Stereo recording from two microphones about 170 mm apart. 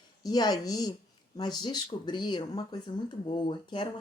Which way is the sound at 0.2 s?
25° left (ahead or behind).